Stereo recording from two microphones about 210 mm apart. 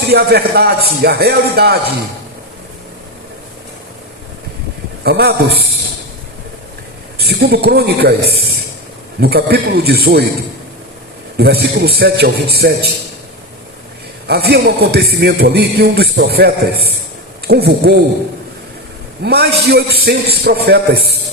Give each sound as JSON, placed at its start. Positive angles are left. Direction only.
{"t": 0.1, "sound": "a man's voice", "side_deg": -50}
{"t": 5.0, "sound": "a man's voice", "side_deg": -50}
{"t": 7.2, "sound": "a man's voice", "side_deg": -50}
{"t": 11.3, "sound": "a man's voice", "side_deg": -50}
{"t": 14.3, "sound": "a man's voice", "side_deg": -50}
{"t": 19.2, "sound": "a man's voice", "side_deg": -50}